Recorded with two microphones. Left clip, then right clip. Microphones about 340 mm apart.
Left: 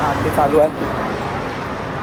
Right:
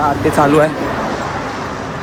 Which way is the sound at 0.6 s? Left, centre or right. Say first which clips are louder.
Right 2 dB; right.